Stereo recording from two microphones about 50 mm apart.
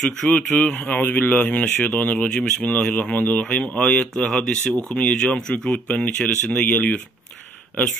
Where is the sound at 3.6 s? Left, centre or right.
Left.